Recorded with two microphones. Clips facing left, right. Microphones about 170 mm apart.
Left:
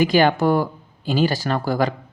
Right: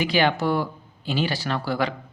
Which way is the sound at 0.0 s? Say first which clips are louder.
Left 5 dB; 45° left (ahead or behind).